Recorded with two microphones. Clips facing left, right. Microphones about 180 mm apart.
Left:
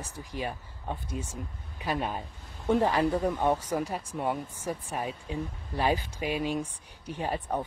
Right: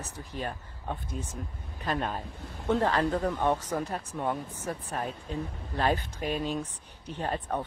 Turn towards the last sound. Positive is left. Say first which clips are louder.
# left 1 dB
turn(degrees=10)  # may be behind; listen again after turning